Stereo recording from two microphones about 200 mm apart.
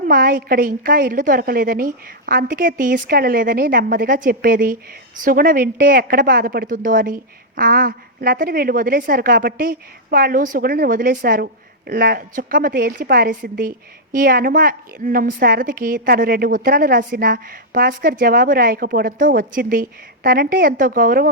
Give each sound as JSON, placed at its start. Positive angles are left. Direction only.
{"t": 0.0, "sound": "a woman's voice", "side_deg": -45}